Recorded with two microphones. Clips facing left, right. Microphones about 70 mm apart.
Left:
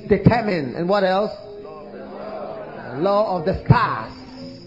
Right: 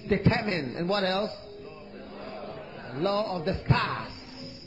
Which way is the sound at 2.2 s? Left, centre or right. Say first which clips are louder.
Left 9 dB; left.